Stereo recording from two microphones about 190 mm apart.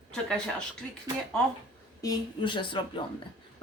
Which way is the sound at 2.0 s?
20° left (ahead or behind).